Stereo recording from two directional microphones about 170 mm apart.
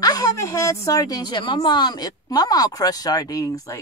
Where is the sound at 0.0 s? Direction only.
20° left (ahead or behind).